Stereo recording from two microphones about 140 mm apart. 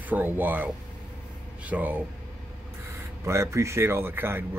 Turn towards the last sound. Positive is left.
turn(degrees=-15)  # may be behind; listen again after turning